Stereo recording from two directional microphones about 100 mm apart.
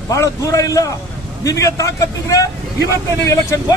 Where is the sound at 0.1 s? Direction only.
35° left (ahead or behind).